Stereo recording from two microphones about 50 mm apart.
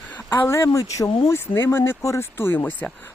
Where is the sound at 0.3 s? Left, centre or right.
Left.